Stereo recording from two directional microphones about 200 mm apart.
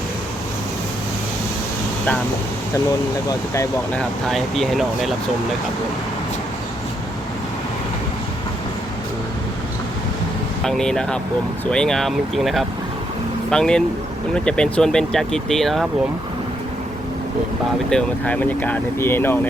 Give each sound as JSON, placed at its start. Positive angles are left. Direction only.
{"t": 3.2, "sound": "speech", "side_deg": 15}
{"t": 4.3, "sound": "speech", "side_deg": 0}
{"t": 10.6, "sound": "speech", "side_deg": 5}
{"t": 17.8, "sound": "speech", "side_deg": 5}